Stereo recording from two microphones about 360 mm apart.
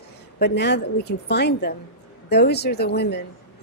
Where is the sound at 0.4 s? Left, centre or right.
Left.